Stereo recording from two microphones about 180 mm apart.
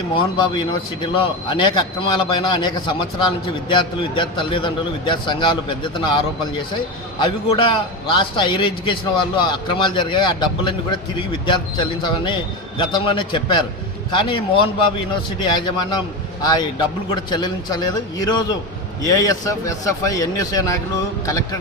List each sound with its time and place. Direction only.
0.2 s a man's voice: 25° left (ahead or behind)